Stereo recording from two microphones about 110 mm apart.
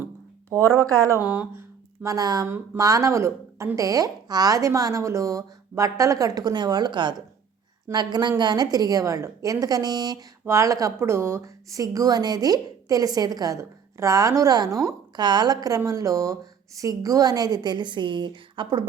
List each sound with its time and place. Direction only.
0.8 s speech: 30° right (ahead or behind)
1.2 s speech: 10° right (ahead or behind)
1.5 s a sound: 25° right (ahead or behind)
2.5 s a woman's voice: 30° right (ahead or behind)
10.4 s a woman's voice: 25° right (ahead or behind); by 18.9 s 45° right (ahead or behind)